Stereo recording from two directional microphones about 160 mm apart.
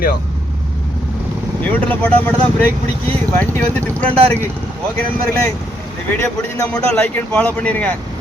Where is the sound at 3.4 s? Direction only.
10° left (ahead or behind).